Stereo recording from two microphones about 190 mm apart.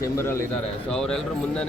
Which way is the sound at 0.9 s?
5° left (ahead or behind).